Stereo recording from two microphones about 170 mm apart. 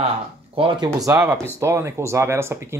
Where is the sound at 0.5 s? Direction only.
30° right (ahead or behind).